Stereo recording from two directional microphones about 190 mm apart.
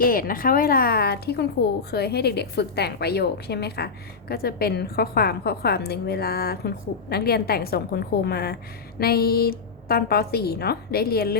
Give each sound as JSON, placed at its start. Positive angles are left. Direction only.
{"t": 0.0, "sound": "a woman's voice", "side_deg": 50}